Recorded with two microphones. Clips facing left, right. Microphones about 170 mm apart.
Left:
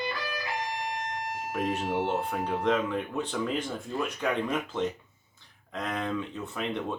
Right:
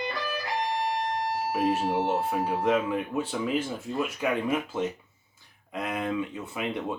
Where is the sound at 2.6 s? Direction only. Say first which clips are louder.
Right 1 dB; 5° right (ahead or behind).